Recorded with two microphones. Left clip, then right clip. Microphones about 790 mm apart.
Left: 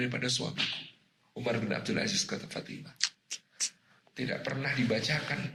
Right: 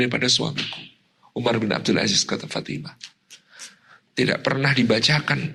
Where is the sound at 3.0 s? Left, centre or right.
Left.